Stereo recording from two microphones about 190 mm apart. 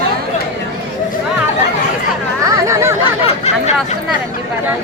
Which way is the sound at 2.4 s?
15° right (ahead or behind).